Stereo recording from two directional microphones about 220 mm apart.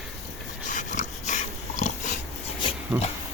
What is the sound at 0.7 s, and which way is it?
Dog, 35° left (ahead or behind).